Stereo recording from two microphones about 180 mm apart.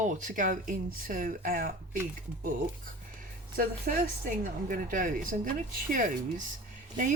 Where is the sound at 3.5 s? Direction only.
50° right (ahead or behind).